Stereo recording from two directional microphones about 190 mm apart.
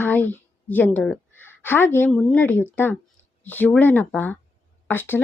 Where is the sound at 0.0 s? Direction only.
10° left (ahead or behind).